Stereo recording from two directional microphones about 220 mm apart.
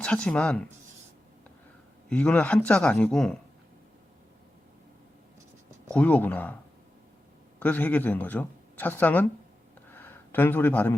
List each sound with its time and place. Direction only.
0.0 s a man's voice: 5° left (ahead or behind)
2.0 s a man's voice: 5° left (ahead or behind)
5.9 s speech: 5° left (ahead or behind)
7.6 s speech: 5° left (ahead or behind)
9.9 s a sound: 10° left (ahead or behind)